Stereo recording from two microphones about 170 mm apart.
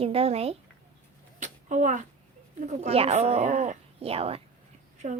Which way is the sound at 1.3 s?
45° right (ahead or behind).